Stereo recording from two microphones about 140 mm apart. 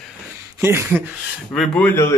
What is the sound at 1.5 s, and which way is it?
Speech, centre (ahead or behind).